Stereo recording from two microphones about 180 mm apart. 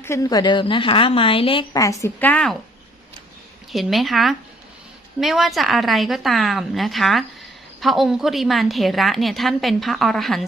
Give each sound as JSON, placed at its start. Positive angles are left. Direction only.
{"t": 0.0, "sound": "a woman's voice", "side_deg": 15}
{"t": 3.7, "sound": "a woman's voice", "side_deg": 0}